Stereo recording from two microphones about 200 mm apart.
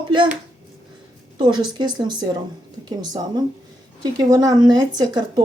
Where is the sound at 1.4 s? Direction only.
20° right (ahead or behind).